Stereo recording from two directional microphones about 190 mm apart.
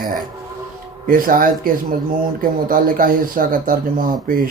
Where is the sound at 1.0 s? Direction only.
45° right (ahead or behind).